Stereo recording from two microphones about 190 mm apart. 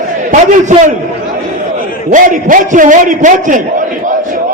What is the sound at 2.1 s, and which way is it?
A man's voice, 45° right (ahead or behind).